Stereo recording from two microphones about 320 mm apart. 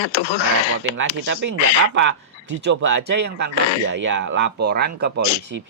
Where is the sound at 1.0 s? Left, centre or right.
Right.